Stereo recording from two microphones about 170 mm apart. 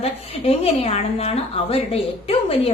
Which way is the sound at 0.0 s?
35° left (ahead or behind).